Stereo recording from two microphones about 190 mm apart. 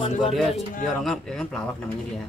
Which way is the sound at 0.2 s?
Centre (ahead or behind).